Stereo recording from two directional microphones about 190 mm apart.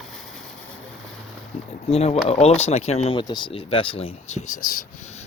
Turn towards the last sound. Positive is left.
turn(degrees=35)  # may be behind; listen again after turning